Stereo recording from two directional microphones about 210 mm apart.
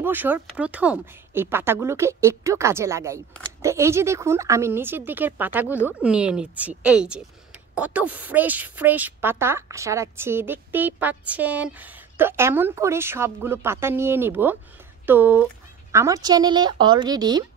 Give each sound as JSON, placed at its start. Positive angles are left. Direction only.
{"t": 0.0, "sound": "a woman's voice", "side_deg": -10}